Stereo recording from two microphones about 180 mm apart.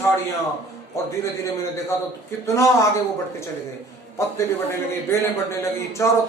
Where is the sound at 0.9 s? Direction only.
15° left (ahead or behind).